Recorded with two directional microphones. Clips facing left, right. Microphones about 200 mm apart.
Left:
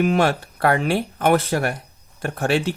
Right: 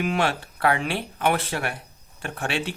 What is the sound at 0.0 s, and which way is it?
Speech, 40° left (ahead or behind).